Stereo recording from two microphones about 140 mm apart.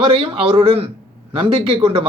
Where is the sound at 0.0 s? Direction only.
35° right (ahead or behind).